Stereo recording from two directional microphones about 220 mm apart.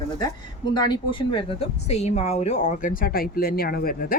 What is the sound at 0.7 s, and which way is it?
Speech, 20° left (ahead or behind).